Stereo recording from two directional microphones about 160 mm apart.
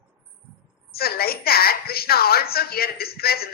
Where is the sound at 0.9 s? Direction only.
75° left (ahead or behind).